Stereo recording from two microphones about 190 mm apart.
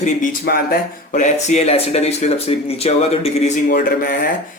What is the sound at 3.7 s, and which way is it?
Speech, 55° left (ahead or behind).